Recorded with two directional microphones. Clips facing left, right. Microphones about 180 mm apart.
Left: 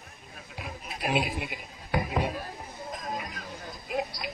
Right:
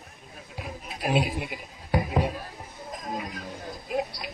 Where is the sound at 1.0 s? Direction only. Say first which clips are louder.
Right 3 dB; 30° right (ahead or behind).